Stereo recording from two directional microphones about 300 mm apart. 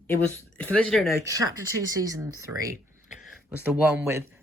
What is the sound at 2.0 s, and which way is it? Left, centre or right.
Speech, centre.